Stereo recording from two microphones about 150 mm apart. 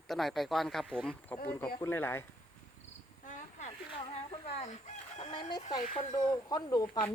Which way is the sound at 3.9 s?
40° left (ahead or behind).